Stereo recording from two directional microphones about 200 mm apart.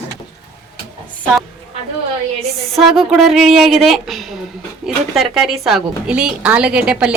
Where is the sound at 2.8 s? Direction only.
Centre (ahead or behind).